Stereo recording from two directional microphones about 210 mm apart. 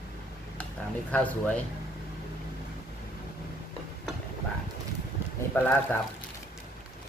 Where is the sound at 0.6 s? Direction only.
5° left (ahead or behind).